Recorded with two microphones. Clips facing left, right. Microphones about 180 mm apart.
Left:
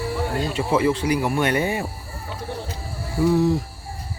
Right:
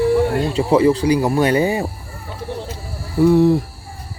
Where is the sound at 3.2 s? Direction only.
60° right (ahead or behind).